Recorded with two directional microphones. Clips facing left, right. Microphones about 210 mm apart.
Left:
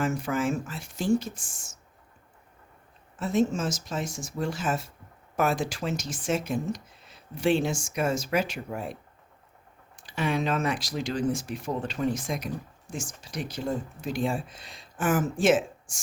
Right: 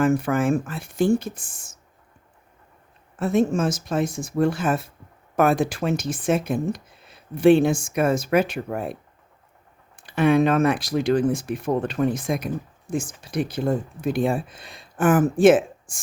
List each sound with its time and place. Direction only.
0.0 s speech: 55° right (ahead or behind)
3.2 s speech: 55° right (ahead or behind)